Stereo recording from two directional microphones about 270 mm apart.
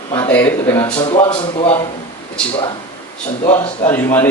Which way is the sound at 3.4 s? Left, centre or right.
Centre.